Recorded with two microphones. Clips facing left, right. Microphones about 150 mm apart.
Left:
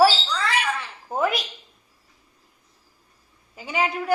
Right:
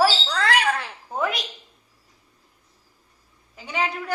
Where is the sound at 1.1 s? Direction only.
Centre (ahead or behind).